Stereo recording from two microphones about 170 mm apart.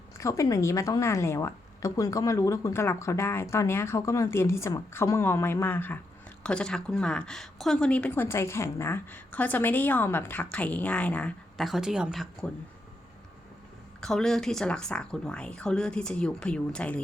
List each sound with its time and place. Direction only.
0.2 s speech: 20° left (ahead or behind); by 12.5 s centre (ahead or behind)
14.0 s speech: 5° left (ahead or behind)